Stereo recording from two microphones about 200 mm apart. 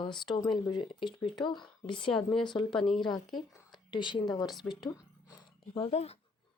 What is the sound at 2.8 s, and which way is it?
A woman's voice, centre (ahead or behind).